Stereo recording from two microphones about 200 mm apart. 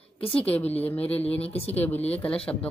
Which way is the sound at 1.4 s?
30° left (ahead or behind).